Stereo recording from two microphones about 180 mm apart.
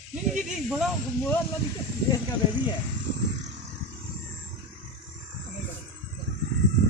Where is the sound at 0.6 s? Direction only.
Centre (ahead or behind).